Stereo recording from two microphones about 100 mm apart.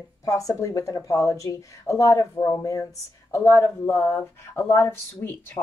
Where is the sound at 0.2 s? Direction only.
35° left (ahead or behind).